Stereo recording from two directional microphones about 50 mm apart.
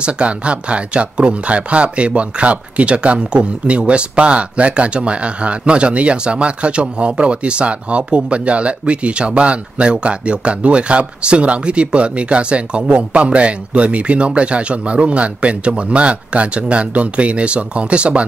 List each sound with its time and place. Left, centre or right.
0.0 s speech: right